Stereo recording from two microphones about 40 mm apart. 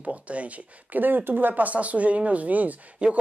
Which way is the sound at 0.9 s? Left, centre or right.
Right.